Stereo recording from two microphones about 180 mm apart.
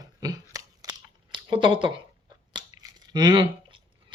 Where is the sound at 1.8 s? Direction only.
25° right (ahead or behind).